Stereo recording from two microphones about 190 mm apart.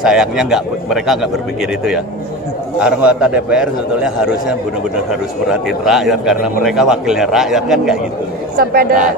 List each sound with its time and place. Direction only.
0.0 s speech: 5° right (ahead or behind)
2.8 s speech: 5° right (ahead or behind)
8.5 s speech: 50° right (ahead or behind)